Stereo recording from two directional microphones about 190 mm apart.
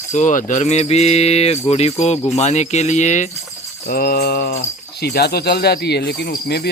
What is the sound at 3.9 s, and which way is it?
Speech, 50° left (ahead or behind).